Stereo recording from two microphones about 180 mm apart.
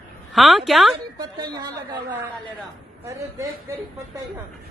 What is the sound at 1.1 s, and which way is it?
Speech, 20° right (ahead or behind).